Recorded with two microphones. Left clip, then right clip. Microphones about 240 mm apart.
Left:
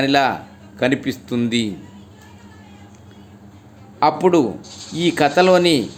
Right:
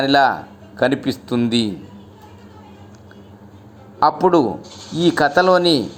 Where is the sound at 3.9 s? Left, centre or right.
Centre.